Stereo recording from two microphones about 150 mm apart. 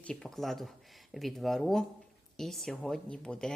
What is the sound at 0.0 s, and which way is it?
Speech, 5° left (ahead or behind).